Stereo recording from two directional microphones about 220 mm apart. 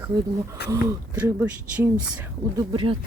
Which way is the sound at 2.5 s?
25° right (ahead or behind).